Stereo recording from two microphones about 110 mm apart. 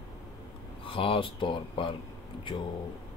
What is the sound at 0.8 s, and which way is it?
Speech, 55° left (ahead or behind).